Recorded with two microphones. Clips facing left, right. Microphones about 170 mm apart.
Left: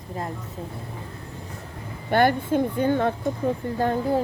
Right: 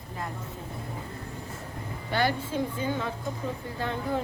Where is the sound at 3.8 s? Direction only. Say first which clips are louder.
Left 7 dB; 45° left (ahead or behind).